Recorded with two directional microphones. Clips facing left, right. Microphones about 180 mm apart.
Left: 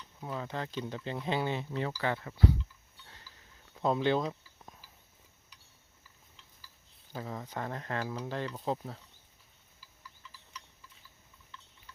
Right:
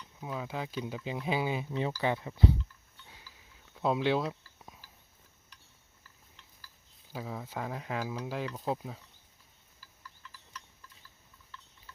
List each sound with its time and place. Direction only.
0.2 s speech: 5° right (ahead or behind)
3.8 s a sound: 5° right (ahead or behind)
7.1 s speech: 5° right (ahead or behind)